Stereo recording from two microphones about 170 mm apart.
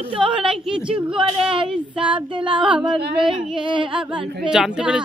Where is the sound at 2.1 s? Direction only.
30° right (ahead or behind).